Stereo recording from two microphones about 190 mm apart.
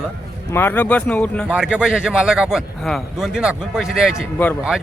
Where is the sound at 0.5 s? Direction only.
10° left (ahead or behind).